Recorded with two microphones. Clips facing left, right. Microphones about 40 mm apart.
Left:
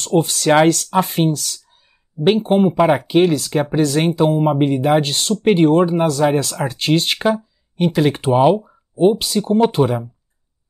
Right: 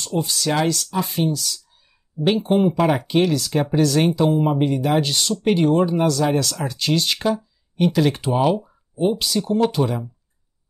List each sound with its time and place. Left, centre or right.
0.0 s speech: left
2.4 s speech: left
7.7 s speech: centre
8.2 s speech: left
8.5 s speech: left